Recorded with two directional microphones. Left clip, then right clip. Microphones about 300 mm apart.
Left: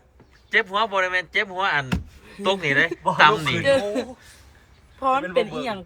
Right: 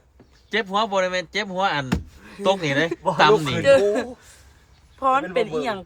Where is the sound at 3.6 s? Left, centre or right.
Centre.